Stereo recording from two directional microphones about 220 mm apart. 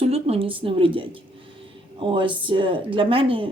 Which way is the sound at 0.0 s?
25° right (ahead or behind).